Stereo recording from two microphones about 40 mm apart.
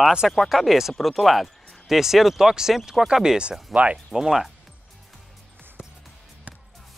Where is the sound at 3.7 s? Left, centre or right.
Right.